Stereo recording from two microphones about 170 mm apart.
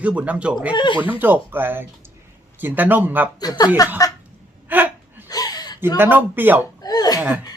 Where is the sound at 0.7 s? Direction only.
25° left (ahead or behind).